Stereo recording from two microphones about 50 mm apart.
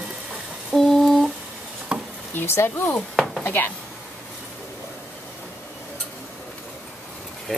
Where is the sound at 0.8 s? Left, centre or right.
Centre.